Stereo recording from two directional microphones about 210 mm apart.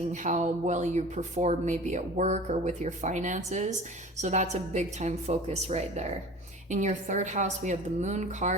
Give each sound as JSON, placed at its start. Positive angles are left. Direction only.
{"t": 0.1, "sound": "speech", "side_deg": -35}